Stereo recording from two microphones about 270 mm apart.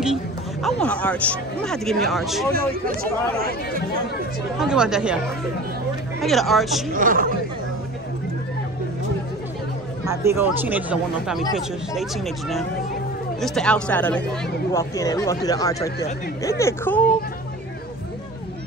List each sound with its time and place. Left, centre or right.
0.0 s speech: centre
3.3 s speech: right
4.6 s speech: centre
6.2 s speech: centre
6.9 s speech: right
10.0 s speech: centre